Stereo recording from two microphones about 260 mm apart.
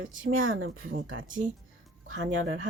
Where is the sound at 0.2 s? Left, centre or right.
Right.